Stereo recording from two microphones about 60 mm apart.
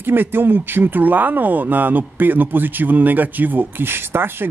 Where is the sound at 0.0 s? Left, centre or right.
Right.